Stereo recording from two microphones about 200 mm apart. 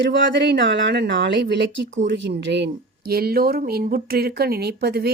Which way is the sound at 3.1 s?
50° right (ahead or behind).